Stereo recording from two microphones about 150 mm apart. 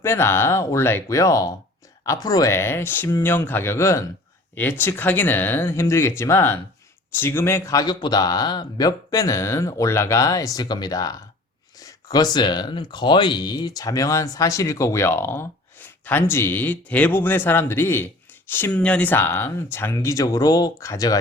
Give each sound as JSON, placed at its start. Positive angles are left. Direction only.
{"t": 0.0, "sound": "a man's voice", "side_deg": 15}